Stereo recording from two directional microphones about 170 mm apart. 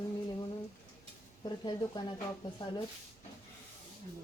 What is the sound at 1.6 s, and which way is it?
Speech, 25° left (ahead or behind).